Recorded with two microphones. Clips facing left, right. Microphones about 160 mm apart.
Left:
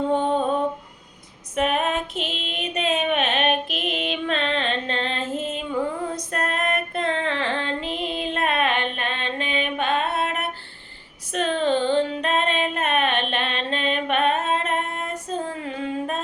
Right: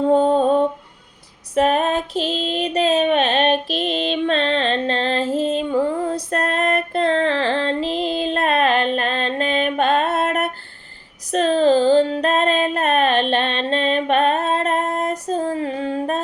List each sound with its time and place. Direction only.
0.1 s lullaby: 35° right (ahead or behind)
1.5 s female singing: 35° right (ahead or behind)
11.3 s female singing: 35° right (ahead or behind)